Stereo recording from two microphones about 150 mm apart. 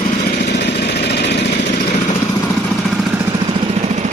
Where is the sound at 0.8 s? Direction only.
90° left.